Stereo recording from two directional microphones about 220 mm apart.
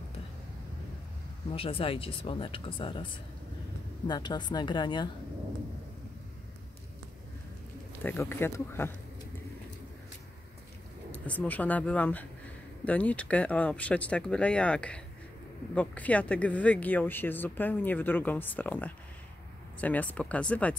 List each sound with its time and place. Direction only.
1.5 s speech: 25° left (ahead or behind)
7.9 s speech: 10° left (ahead or behind)
11.1 s speech: 5° left (ahead or behind)